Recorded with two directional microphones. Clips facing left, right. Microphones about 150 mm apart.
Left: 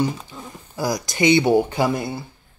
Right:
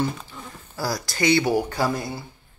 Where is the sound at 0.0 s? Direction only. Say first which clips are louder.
Left 3 dB; 15° left (ahead or behind).